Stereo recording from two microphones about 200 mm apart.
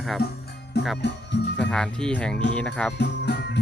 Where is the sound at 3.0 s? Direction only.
60° left (ahead or behind).